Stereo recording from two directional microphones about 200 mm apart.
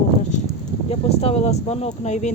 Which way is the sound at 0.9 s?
30° left (ahead or behind).